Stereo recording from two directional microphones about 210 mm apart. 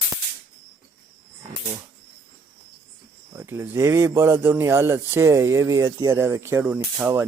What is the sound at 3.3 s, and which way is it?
Speech, 10° right (ahead or behind).